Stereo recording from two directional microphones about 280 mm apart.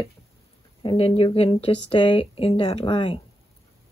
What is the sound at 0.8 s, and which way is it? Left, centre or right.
Speech, centre.